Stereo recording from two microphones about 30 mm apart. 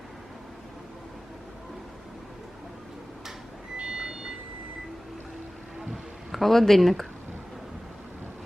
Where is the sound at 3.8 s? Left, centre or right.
Right.